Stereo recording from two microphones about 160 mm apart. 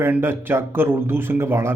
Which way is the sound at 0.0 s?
15° right (ahead or behind).